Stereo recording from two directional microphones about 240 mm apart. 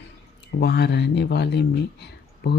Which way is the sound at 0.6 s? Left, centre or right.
Left.